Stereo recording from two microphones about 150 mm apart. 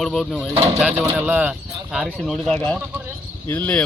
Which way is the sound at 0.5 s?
40° right (ahead or behind).